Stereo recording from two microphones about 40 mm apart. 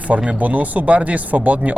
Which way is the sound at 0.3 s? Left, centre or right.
Right.